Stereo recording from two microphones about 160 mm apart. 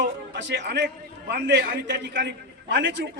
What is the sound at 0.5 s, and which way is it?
A man's voice, 90° right.